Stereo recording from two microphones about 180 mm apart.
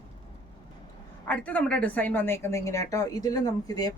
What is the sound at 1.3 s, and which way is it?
A woman's voice, 10° left (ahead or behind).